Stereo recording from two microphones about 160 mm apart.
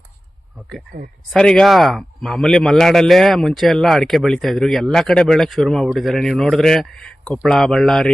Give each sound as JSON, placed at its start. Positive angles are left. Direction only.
{"t": 1.3, "sound": "a man's voice", "side_deg": 5}